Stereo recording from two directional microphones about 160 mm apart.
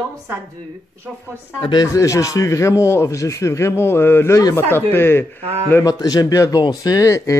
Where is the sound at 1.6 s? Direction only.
25° left (ahead or behind).